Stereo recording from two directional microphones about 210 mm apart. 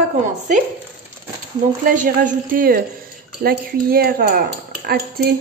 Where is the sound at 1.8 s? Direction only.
40° right (ahead or behind).